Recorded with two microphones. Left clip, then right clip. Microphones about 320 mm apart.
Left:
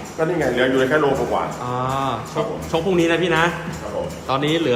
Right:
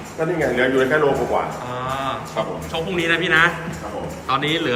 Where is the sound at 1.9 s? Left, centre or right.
Centre.